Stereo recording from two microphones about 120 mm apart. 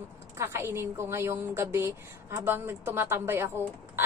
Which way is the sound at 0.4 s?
20° right (ahead or behind).